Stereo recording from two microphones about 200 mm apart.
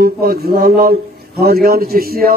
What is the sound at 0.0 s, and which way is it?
A man's voice, 50° right (ahead or behind).